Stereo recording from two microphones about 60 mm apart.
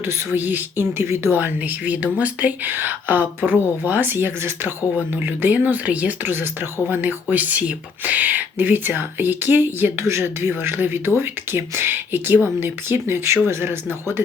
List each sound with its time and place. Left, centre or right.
0.3 s speech: right
1.4 s speech: right
6.2 s speech: right
10.0 s speech: right
10.6 s speech: right